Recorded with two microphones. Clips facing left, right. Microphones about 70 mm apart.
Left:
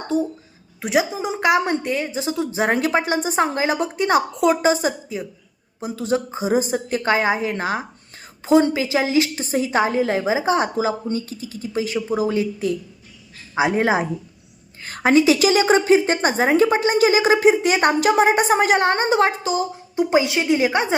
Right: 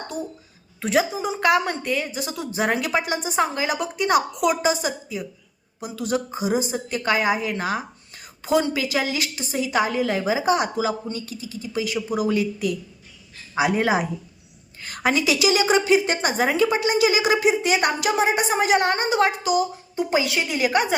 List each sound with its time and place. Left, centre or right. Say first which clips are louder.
0.1 s a woman's voice: left 14 dB; left